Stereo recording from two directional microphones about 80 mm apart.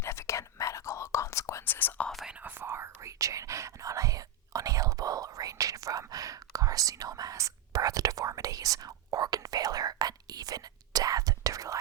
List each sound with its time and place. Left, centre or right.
0.0 s whispering: left
1.6 s whispering: left
2.4 s whispering: right